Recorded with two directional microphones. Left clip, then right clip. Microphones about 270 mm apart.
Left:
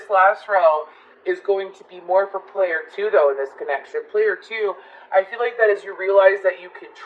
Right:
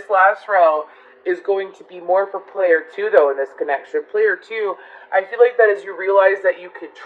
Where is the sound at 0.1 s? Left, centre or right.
Right.